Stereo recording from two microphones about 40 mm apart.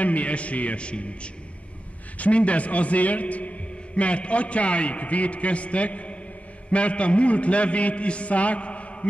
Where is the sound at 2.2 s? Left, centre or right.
Left.